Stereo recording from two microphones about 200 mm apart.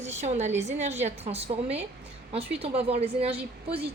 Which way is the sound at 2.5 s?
30° right (ahead or behind).